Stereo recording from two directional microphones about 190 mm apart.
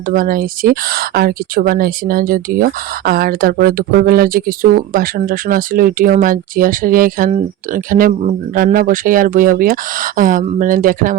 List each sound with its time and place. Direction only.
0.1 s speech: 50° right (ahead or behind)